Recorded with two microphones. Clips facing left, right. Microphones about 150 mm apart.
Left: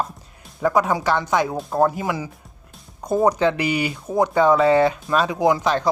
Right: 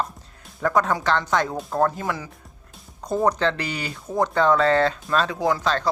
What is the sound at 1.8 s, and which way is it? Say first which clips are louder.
Speech: left 3 dB; 10° left (ahead or behind).